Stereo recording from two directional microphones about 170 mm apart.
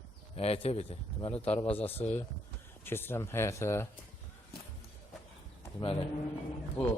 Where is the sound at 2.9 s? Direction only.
15° left (ahead or behind).